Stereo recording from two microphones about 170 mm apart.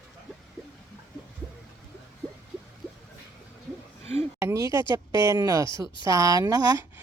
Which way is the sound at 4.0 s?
40° right (ahead or behind).